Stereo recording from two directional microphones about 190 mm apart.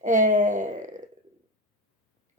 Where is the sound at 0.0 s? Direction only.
40° right (ahead or behind).